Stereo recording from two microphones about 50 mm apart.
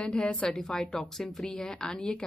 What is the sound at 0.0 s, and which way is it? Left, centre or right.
Speech, left.